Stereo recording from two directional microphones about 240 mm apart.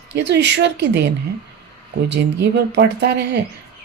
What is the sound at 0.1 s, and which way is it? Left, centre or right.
Speech, right.